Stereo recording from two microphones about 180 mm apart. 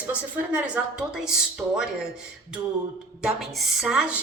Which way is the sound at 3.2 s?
Centre (ahead or behind).